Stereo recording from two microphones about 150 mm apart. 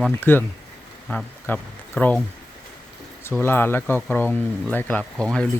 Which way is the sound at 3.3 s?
15° left (ahead or behind).